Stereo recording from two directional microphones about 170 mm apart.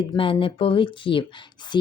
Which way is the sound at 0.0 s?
30° left (ahead or behind).